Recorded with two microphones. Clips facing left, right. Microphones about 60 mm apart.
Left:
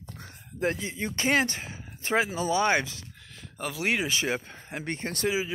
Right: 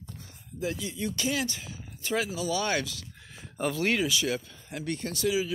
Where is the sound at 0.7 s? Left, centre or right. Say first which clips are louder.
Left 1 dB; left.